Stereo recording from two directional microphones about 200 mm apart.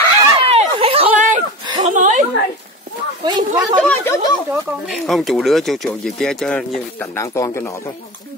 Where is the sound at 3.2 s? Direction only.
20° right (ahead or behind).